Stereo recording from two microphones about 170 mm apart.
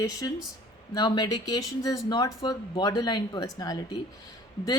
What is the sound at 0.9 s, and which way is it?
A woman's voice, 25° left (ahead or behind).